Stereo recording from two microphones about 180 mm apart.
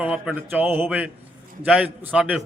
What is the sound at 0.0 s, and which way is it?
A man's voice, 5° right (ahead or behind).